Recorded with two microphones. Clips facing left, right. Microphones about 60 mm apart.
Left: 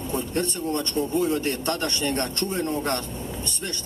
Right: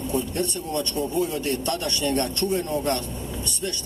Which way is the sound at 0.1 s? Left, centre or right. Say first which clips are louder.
Even; left.